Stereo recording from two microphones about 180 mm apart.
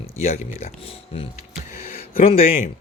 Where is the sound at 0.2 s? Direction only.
35° left (ahead or behind).